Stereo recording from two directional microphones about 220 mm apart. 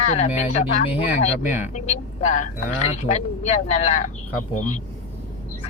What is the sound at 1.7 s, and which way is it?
Speech, 35° left (ahead or behind).